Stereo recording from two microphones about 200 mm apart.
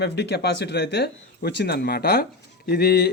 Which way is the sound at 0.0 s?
55° left (ahead or behind).